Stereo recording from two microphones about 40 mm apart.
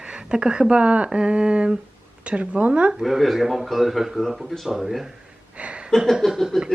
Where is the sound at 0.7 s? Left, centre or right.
Right.